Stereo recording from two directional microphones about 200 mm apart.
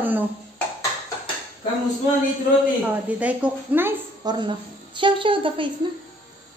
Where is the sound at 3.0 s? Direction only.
5° right (ahead or behind).